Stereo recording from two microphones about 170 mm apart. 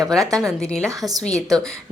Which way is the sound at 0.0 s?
Centre (ahead or behind).